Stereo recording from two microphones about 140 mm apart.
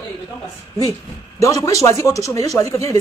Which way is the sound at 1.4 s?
25° left (ahead or behind).